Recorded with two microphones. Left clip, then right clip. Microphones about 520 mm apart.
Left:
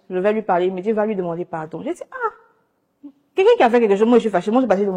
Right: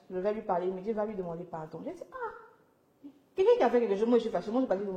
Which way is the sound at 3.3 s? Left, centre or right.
Left.